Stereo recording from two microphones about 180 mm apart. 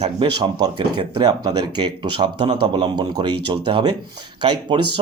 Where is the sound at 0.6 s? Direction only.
25° right (ahead or behind).